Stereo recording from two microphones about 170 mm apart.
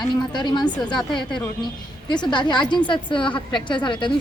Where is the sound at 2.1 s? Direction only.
25° left (ahead or behind).